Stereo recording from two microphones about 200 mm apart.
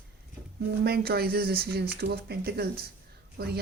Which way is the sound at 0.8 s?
50° right (ahead or behind).